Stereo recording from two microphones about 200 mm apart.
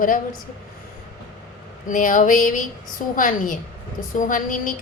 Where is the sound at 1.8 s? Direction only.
40° left (ahead or behind).